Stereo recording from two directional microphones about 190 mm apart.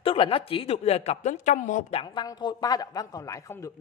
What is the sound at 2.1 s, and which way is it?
A woman's voice, 20° left (ahead or behind).